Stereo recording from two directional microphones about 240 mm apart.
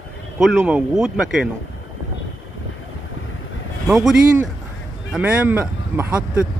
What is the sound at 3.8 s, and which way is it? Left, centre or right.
Speech, centre.